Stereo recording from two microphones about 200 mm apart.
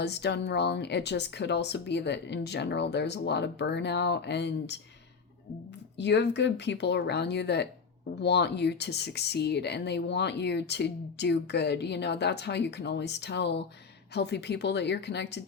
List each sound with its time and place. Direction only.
0.0 s speech: 55° left (ahead or behind)
6.0 s speech: 60° left (ahead or behind)